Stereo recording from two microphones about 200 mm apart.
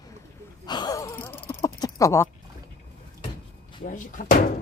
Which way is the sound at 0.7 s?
20° left (ahead or behind).